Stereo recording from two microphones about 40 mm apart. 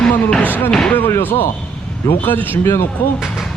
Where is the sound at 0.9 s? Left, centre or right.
Left.